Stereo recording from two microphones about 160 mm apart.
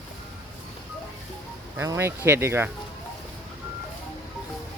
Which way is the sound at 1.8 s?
15° right (ahead or behind).